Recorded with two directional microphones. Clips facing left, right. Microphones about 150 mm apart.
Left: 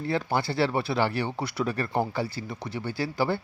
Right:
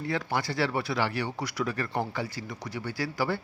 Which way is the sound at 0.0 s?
30° left (ahead or behind).